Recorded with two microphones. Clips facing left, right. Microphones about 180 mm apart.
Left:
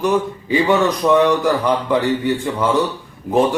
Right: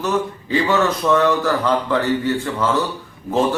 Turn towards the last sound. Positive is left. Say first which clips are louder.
# left 3 dB
turn(degrees=15)  # may be behind; listen again after turning